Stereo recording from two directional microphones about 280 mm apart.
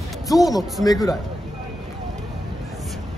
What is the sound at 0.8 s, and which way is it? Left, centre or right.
Speech, centre.